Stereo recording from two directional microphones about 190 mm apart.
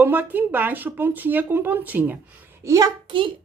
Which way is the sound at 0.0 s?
10° right (ahead or behind).